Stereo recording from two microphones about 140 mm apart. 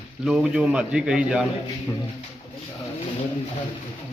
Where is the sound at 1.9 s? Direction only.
15° left (ahead or behind).